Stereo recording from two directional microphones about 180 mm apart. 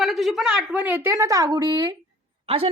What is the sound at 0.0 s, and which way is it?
A woman's voice, centre (ahead or behind).